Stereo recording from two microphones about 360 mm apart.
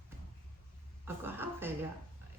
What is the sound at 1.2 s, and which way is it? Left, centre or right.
Speech, centre.